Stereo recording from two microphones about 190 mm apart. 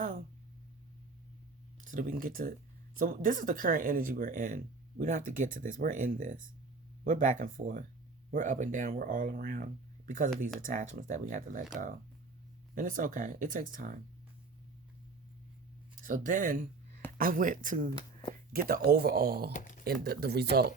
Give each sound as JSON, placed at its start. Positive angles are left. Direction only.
{"t": 1.8, "sound": "speech", "side_deg": -45}
{"t": 12.7, "sound": "speech", "side_deg": -45}
{"t": 16.0, "sound": "speech", "side_deg": -45}
{"t": 17.9, "sound": "speech", "side_deg": 25}
{"t": 18.5, "sound": "speech", "side_deg": -55}
{"t": 19.5, "sound": "speech", "side_deg": 45}
{"t": 19.8, "sound": "speech", "side_deg": -55}